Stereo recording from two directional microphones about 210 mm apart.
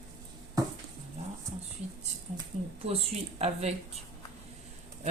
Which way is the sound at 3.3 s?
30° right (ahead or behind).